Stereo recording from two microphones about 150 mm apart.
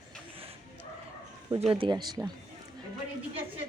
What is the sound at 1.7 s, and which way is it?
Speech, 30° right (ahead or behind).